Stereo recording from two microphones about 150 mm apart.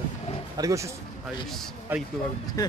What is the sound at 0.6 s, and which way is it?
Speech, 20° right (ahead or behind).